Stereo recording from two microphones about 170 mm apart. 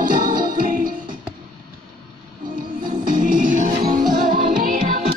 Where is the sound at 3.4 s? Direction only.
50° right (ahead or behind).